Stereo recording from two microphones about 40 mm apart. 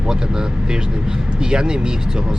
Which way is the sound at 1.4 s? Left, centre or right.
Right.